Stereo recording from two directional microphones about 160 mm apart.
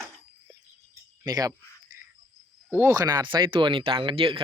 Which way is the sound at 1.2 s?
20° right (ahead or behind).